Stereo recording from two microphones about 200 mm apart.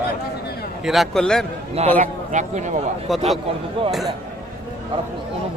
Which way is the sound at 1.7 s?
35° right (ahead or behind).